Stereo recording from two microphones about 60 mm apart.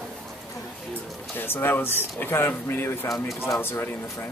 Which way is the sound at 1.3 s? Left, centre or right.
Left.